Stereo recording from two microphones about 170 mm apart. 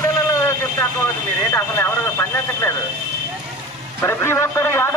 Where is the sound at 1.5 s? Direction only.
15° left (ahead or behind).